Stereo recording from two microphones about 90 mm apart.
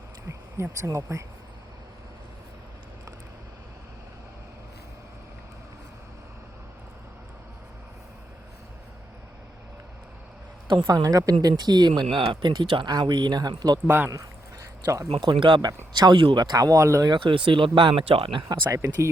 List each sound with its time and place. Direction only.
0.3 s a sound: 35° right (ahead or behind)
0.9 s speech: 35° right (ahead or behind)
10.8 s speech: 40° right (ahead or behind)
11.9 s speech: 65° right (ahead or behind); by 13.7 s 45° right (ahead or behind)
13.8 s speech: 20° right (ahead or behind)
15.1 s speech: 65° right (ahead or behind); by 17.1 s 35° right (ahead or behind)
17.1 s speech: 65° right (ahead or behind); by 18.4 s 85° right
18.4 s speech: 35° right (ahead or behind)